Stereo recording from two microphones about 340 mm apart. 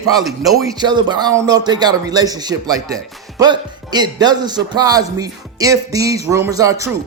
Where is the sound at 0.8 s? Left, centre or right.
Centre.